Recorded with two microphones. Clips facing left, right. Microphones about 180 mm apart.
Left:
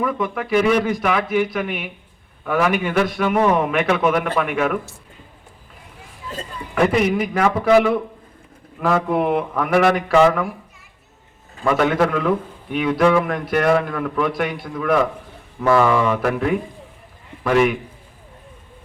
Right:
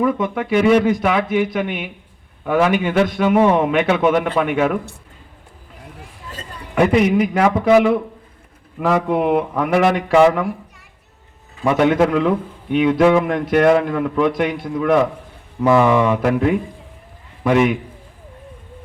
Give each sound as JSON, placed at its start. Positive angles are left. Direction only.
{"t": 0.0, "sound": "a man's voice", "side_deg": -25}
{"t": 6.7, "sound": "a man's voice", "side_deg": -20}
{"t": 8.8, "sound": "mantra", "side_deg": -15}
{"t": 11.6, "sound": "a man's voice", "side_deg": -20}